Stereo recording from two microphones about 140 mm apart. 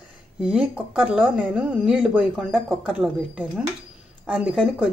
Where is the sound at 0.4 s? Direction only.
5° right (ahead or behind).